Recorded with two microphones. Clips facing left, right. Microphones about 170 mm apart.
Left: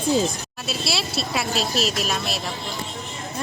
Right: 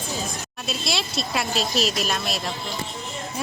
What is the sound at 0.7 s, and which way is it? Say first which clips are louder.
Speech: left 1 dB; 5° left (ahead or behind).